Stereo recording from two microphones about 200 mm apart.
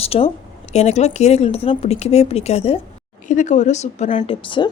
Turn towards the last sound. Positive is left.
turn(degrees=25)  # may be behind; listen again after turning